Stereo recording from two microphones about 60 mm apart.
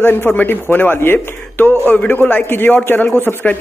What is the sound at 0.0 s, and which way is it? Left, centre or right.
A man's voice, left.